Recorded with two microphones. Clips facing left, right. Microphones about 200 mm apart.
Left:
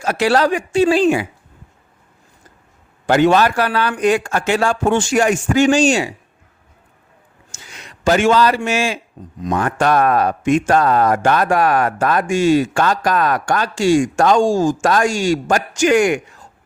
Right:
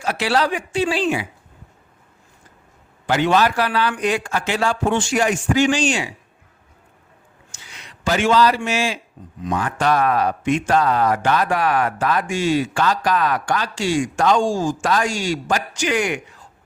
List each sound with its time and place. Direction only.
0.0 s speech: 45° left (ahead or behind)
3.1 s speech: 50° left (ahead or behind)
7.5 s speech: 45° left (ahead or behind)